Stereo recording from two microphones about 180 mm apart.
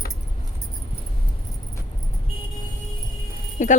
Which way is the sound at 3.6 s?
45° left (ahead or behind).